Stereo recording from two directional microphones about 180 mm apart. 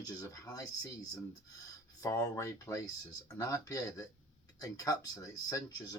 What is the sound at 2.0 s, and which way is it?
Speech, 20° left (ahead or behind).